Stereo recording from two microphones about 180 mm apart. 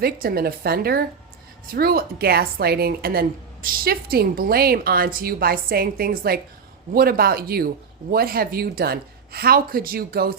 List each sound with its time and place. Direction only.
0.0 s a woman's voice: 55° right (ahead or behind)